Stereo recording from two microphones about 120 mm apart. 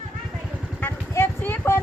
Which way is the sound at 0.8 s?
15° left (ahead or behind).